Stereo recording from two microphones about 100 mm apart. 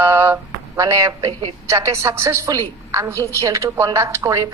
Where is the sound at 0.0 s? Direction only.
25° right (ahead or behind).